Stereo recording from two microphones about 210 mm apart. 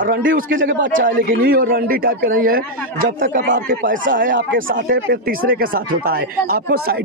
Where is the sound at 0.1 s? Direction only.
40° right (ahead or behind).